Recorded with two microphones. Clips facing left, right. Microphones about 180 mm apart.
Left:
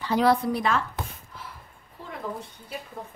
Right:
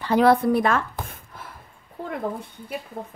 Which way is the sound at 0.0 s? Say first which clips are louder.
Right 4 dB; 55° right (ahead or behind).